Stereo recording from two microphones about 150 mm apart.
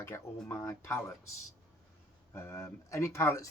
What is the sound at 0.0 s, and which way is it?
Speech, 15° left (ahead or behind).